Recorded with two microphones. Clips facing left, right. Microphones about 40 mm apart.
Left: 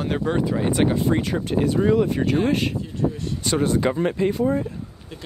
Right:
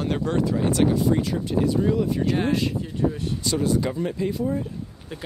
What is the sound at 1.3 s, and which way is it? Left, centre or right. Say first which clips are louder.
Speech: left 2 dB; left.